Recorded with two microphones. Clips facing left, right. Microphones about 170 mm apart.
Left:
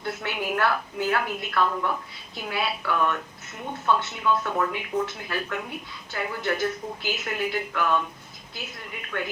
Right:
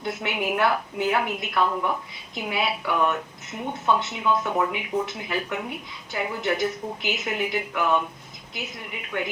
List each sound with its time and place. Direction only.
0.0 s a woman's voice: 15° right (ahead or behind)